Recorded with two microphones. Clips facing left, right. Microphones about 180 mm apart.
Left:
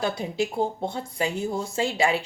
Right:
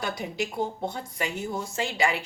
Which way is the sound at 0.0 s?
25° left (ahead or behind).